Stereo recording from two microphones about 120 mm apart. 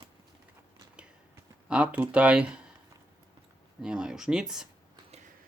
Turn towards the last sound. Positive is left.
turn(degrees=-5)  # may be behind; listen again after turning